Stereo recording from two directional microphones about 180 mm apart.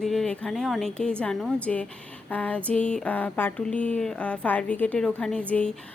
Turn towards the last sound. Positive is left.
turn(degrees=5)  # may be behind; listen again after turning